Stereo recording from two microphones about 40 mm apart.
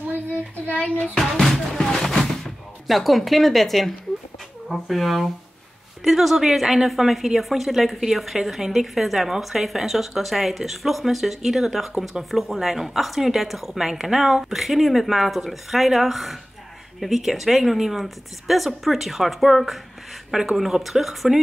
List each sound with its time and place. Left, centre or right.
0.7 s child singing: left
1.3 s music: centre
2.9 s a woman's voice: centre